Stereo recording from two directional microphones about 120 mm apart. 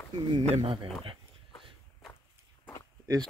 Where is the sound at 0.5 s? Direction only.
45° right (ahead or behind).